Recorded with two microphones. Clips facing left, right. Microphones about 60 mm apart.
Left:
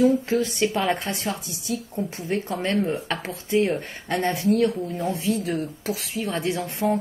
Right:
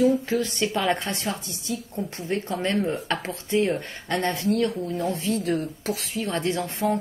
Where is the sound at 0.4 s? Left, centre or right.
Centre.